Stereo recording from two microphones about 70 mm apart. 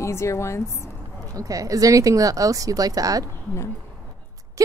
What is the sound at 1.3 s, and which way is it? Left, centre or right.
Speech, right.